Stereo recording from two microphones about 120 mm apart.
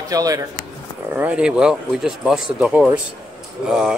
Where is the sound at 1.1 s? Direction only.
10° right (ahead or behind).